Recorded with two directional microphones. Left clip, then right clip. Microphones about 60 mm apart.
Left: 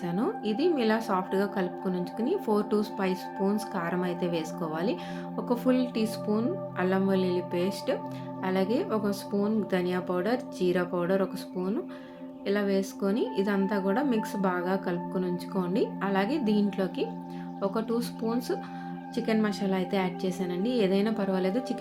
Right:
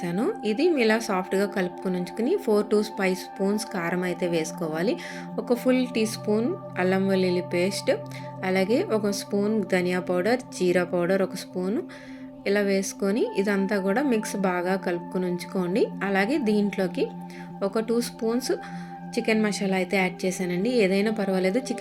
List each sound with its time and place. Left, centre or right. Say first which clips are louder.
0.0 s a woman's voice: right 3 dB; right
16.4 s a woman's voice: right 4 dB; right